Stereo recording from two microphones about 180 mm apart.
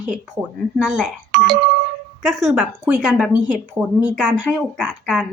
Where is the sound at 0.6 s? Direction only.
Centre (ahead or behind).